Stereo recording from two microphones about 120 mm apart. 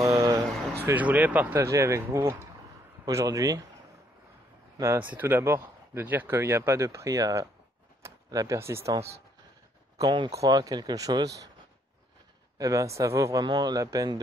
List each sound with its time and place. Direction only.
0.0 s a sound: 30° right (ahead or behind)
0.8 s speech: 15° right (ahead or behind)
4.9 s speech: 15° right (ahead or behind)
9.9 s speech: 35° right (ahead or behind)
12.5 s speech: 25° right (ahead or behind)